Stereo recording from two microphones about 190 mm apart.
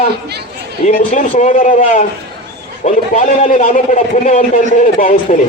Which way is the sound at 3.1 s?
40° left (ahead or behind).